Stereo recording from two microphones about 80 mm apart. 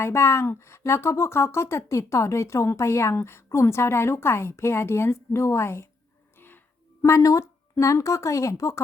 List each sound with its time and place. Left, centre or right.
0.0 s speech: left
7.0 s speech: left